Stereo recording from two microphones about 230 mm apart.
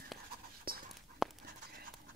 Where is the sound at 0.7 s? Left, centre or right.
Right.